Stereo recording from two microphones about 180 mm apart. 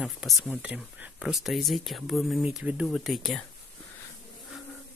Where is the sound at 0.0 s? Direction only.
Centre (ahead or behind).